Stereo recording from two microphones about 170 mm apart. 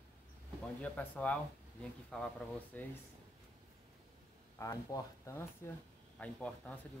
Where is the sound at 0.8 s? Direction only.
10° left (ahead or behind).